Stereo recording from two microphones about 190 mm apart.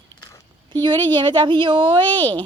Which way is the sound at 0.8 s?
25° right (ahead or behind).